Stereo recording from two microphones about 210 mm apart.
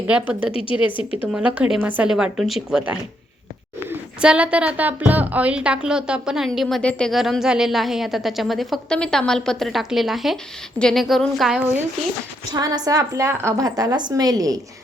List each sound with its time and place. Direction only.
0.1 s a woman's voice: 5° right (ahead or behind)
0.5 s a woman's voice: 25° left (ahead or behind)
1.2 s a woman's voice: 5° right (ahead or behind)
12.5 s a woman's voice: 20° right (ahead or behind)